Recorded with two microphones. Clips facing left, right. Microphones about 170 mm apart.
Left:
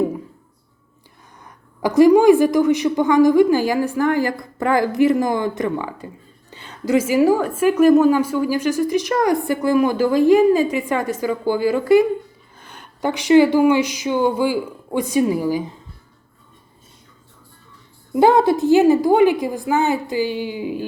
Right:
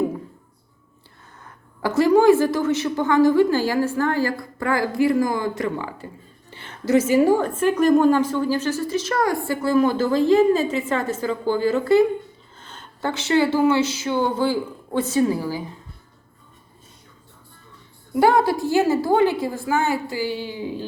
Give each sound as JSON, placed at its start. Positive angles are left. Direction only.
{"t": 1.8, "sound": "a woman's voice", "side_deg": 15}
{"t": 18.1, "sound": "a woman's voice", "side_deg": 20}